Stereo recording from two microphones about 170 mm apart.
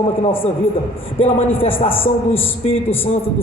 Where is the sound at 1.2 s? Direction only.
35° left (ahead or behind).